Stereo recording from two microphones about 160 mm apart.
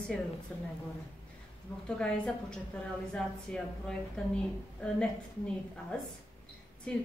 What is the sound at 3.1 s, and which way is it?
A woman's voice, 5° left (ahead or behind).